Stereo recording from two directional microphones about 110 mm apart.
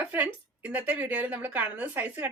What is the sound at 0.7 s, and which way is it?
Speech, 15° right (ahead or behind).